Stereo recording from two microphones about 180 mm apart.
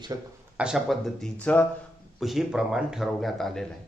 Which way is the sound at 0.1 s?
20° right (ahead or behind).